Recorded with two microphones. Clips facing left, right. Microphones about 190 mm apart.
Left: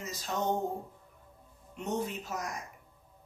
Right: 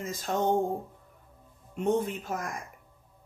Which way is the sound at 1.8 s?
55° right (ahead or behind).